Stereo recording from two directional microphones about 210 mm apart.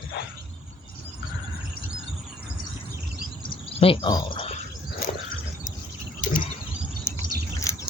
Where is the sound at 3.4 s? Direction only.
25° left (ahead or behind).